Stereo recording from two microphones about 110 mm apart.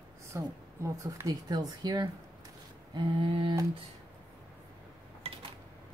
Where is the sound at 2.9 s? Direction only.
45° right (ahead or behind).